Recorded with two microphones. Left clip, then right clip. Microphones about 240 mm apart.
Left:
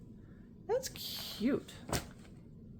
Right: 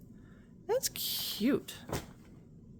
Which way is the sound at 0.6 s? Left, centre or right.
Right.